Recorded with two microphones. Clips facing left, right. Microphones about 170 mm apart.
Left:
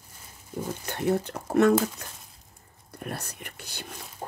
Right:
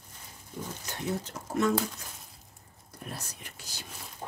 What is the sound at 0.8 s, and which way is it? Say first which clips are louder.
Speech: left 8 dB; 60° left (ahead or behind).